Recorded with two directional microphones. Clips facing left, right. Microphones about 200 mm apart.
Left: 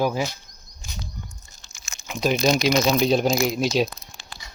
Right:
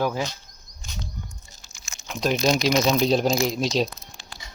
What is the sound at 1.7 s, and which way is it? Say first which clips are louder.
Crumpling: left 2 dB; 55° left (ahead or behind).